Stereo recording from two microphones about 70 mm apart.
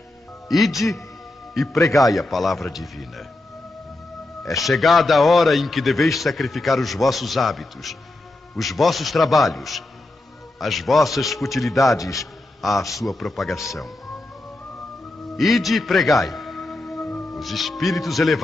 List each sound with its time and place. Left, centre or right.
0.5 s a man's voice: centre
4.5 s a man's voice: centre
12.0 s a man's voice: left
12.6 s a man's voice: centre
15.3 s a man's voice: centre